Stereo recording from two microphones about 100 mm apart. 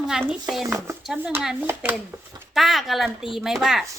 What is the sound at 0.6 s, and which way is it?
Speech, 25° right (ahead or behind).